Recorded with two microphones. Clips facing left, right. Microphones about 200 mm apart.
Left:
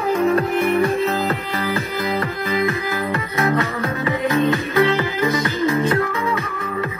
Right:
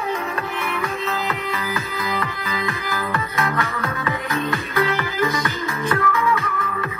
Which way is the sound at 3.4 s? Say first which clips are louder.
Left 8 dB; 25° left (ahead or behind).